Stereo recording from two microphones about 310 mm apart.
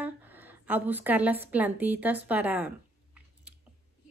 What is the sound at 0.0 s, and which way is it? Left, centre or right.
A woman's voice, centre.